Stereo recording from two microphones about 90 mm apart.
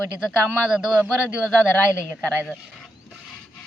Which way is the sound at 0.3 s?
5° right (ahead or behind).